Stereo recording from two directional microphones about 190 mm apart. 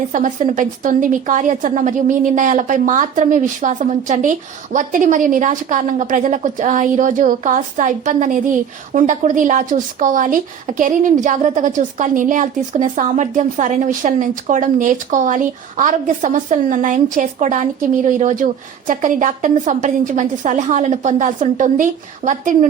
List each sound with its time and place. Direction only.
0.1 s a woman's voice: 40° right (ahead or behind)